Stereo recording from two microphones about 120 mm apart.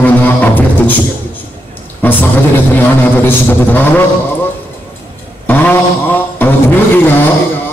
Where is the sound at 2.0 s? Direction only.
15° left (ahead or behind).